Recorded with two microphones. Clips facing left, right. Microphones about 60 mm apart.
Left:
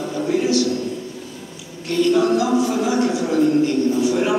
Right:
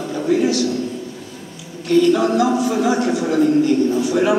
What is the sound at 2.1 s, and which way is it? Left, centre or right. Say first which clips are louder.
A man's voice: even; right.